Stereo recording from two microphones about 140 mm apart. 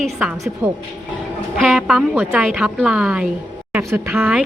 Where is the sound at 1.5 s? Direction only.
5° right (ahead or behind).